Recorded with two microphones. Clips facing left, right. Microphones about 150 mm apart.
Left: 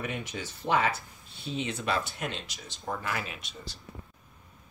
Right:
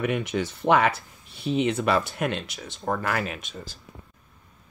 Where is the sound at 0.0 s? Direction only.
70° right (ahead or behind).